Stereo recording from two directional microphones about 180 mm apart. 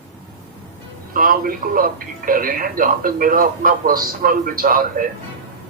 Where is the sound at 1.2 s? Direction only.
50° right (ahead or behind).